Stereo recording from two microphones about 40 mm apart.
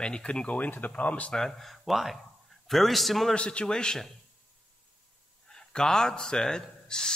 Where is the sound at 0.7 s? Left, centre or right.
Left.